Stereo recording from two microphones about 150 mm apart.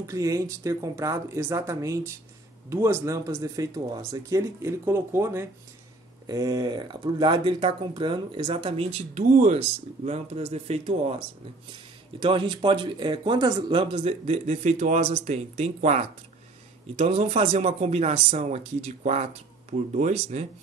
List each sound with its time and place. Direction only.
0.0 s speech: 20° right (ahead or behind); by 20.4 s 50° right (ahead or behind)